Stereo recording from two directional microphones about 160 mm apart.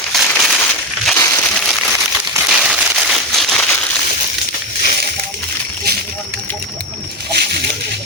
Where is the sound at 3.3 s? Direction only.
5° left (ahead or behind).